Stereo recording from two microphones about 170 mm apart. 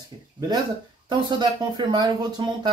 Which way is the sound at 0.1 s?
30° right (ahead or behind).